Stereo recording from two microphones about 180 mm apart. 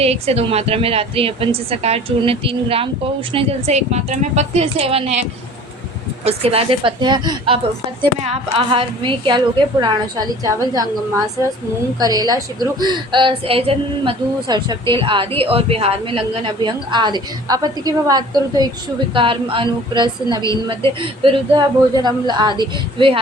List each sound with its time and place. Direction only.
0.0 s a woman's voice: 35° right (ahead or behind)
6.2 s a woman's voice: 35° right (ahead or behind)
11.9 s a woman's voice: 20° right (ahead or behind)